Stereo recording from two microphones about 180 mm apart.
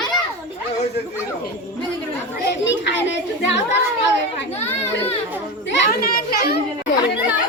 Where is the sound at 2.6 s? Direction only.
85° left.